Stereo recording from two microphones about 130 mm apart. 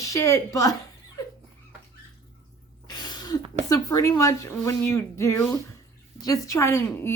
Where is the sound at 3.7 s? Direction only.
25° left (ahead or behind).